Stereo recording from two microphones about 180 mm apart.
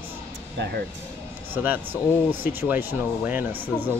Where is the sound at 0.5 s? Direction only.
70° right (ahead or behind).